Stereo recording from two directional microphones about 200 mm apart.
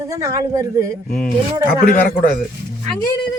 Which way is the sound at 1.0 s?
5° left (ahead or behind).